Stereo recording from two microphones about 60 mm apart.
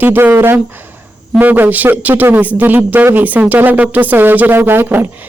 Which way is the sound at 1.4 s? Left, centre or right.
Right.